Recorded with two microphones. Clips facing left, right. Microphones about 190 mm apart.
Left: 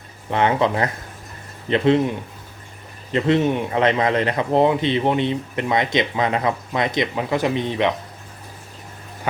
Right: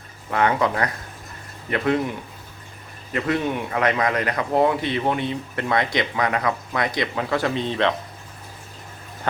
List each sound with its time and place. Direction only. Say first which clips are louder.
0.3 s a man's voice: left 2 dB; 25° left (ahead or behind)